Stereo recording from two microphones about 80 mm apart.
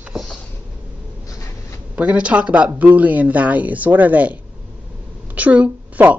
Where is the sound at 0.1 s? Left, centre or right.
Centre.